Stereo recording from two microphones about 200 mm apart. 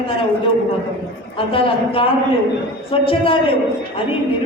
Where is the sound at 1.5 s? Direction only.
25° left (ahead or behind).